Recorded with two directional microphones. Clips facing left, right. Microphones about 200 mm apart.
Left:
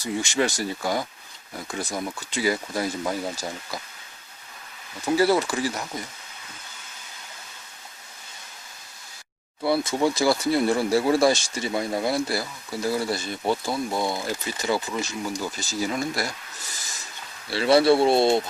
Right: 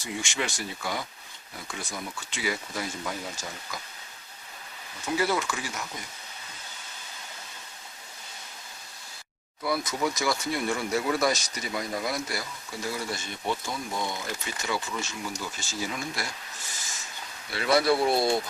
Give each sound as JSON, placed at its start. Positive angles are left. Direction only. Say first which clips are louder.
{"t": 0.0, "sound": "speech", "louder": "left 8 dB", "side_deg": 40}
{"t": 5.1, "sound": "speech", "louder": "left 7 dB", "side_deg": 35}
{"t": 9.6, "sound": "speech", "louder": "left 6 dB", "side_deg": 30}
{"t": 17.5, "sound": "speech", "louder": "left 6 dB", "side_deg": 30}